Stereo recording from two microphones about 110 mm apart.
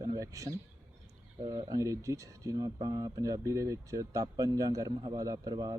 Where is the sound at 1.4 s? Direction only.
40° right (ahead or behind).